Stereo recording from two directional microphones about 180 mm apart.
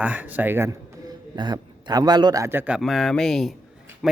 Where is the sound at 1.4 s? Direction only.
25° right (ahead or behind).